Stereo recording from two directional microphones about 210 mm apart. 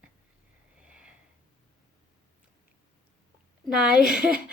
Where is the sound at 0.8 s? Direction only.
5° right (ahead or behind).